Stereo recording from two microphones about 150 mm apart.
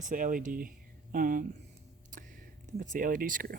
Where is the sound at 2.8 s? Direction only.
65° right (ahead or behind).